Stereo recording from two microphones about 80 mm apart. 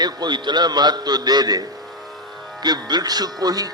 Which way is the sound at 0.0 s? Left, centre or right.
Right.